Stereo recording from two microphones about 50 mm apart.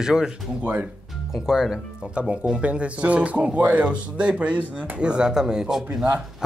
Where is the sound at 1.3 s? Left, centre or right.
Centre.